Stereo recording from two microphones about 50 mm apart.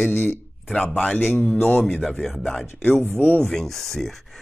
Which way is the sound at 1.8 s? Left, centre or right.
Centre.